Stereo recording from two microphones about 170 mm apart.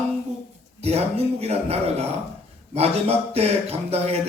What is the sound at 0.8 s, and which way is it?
Speech, 40° right (ahead or behind).